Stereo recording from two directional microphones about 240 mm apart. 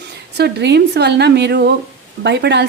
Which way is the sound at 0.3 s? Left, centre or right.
Right.